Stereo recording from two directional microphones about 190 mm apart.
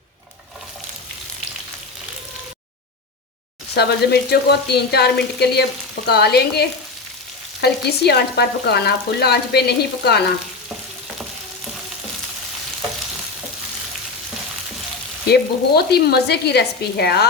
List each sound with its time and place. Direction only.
3.8 s frying: 60° left (ahead or behind)
15.3 s frying: 55° left (ahead or behind)